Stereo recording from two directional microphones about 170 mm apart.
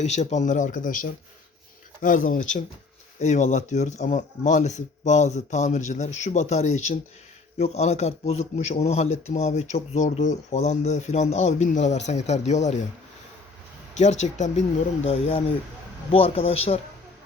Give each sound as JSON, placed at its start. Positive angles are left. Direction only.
{"t": 0.0, "sound": "a man's voice", "side_deg": 40}
{"t": 13.9, "sound": "speech", "side_deg": 40}